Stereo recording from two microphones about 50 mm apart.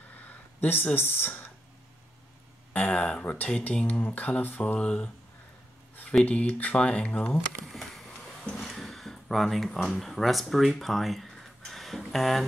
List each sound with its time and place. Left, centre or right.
0.1 s a sound: left
0.9 s speech: left
2.7 s speech: left
4.7 s speech: left
6.2 s speech: left
7.7 s a sound: centre
8.6 s speech: centre